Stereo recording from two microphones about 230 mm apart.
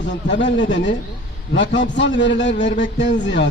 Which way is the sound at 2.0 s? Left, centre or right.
Left.